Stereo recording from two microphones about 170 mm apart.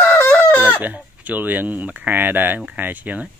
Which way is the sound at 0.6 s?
10° right (ahead or behind).